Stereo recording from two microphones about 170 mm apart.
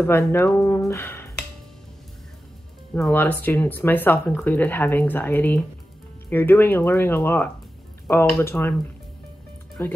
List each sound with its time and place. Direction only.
0.0 s speech: 15° left (ahead or behind)
2.9 s speech: 10° left (ahead or behind)
9.8 s speech: 10° left (ahead or behind)